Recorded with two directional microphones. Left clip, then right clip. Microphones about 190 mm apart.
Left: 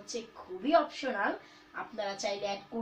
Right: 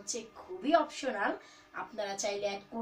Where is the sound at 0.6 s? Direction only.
Centre (ahead or behind).